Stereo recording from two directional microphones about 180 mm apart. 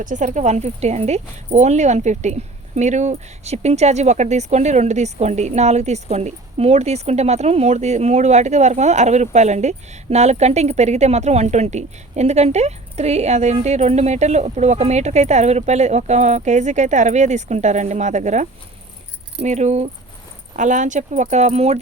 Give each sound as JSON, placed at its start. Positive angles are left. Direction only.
{"t": 0.0, "sound": "speech", "side_deg": -45}